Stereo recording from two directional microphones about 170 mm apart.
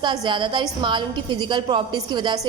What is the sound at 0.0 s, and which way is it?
A woman's voice, 25° right (ahead or behind).